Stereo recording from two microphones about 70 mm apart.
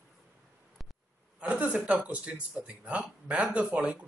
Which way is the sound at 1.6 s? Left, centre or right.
Centre.